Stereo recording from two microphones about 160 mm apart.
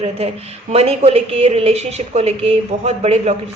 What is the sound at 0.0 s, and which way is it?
Speech, 40° right (ahead or behind).